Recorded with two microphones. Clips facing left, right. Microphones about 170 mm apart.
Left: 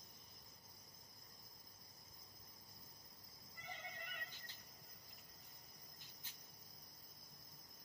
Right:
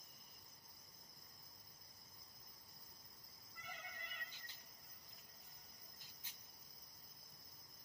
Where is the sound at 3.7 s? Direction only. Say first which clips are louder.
Left 2 dB; 25° left (ahead or behind).